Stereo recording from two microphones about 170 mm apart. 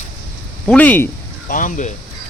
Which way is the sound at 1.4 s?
50° left (ahead or behind).